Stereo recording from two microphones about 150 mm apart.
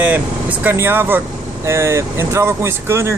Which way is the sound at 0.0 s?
15° right (ahead or behind).